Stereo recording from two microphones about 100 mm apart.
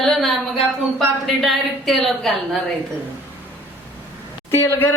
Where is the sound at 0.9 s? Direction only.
Centre (ahead or behind).